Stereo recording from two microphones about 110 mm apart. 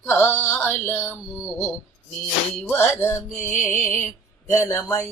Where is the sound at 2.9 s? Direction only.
20° left (ahead or behind).